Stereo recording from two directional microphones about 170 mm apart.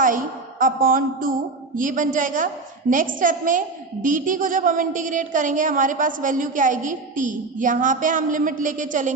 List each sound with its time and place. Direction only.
0.6 s a woman's voice: 55° right (ahead or behind)